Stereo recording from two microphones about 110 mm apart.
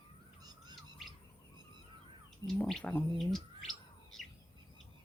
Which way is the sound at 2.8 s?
15° left (ahead or behind).